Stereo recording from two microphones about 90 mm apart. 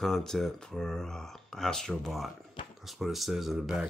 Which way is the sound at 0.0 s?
5° left (ahead or behind).